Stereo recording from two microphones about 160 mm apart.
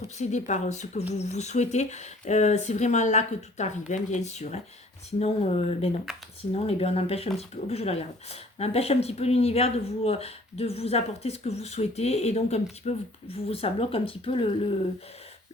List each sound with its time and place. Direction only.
0.2 s speech: 50° left (ahead or behind)
6.1 s speech: 5° right (ahead or behind)
6.5 s speech: 40° left (ahead or behind)